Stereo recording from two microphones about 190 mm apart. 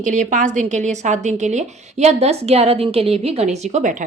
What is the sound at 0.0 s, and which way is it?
A woman's voice, 40° right (ahead or behind).